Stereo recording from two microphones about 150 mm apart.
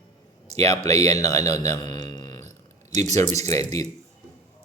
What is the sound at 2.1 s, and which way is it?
Burping, 30° left (ahead or behind).